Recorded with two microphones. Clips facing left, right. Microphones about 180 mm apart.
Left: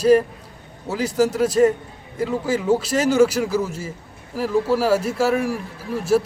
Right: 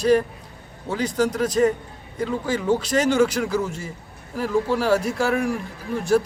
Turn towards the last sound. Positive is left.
turn(degrees=5)  # may be behind; listen again after turning